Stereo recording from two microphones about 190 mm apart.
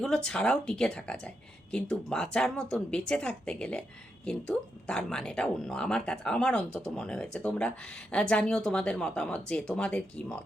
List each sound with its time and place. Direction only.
0.0 s speech: 5° left (ahead or behind)